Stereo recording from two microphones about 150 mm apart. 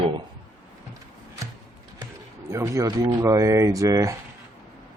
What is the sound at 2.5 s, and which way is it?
Speech, 20° right (ahead or behind).